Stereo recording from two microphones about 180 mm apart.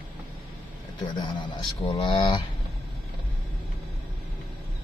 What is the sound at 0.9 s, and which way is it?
Speech, 25° left (ahead or behind).